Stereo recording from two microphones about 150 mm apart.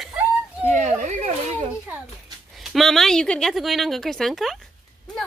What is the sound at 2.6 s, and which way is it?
Speech, centre (ahead or behind).